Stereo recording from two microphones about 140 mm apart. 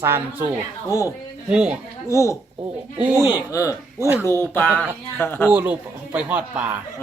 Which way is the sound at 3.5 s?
25° left (ahead or behind).